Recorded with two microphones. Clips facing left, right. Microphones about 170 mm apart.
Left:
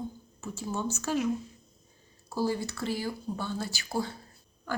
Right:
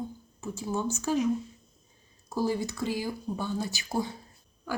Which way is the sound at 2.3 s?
15° right (ahead or behind).